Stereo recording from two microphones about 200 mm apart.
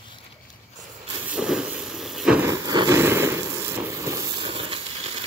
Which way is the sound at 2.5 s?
20° right (ahead or behind).